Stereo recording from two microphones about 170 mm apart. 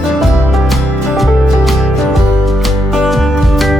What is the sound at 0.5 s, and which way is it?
Music, centre (ahead or behind).